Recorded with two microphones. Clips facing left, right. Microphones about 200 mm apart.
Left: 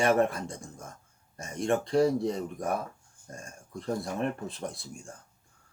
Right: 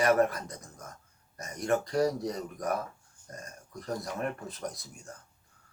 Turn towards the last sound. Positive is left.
turn(degrees=30)  # may be behind; listen again after turning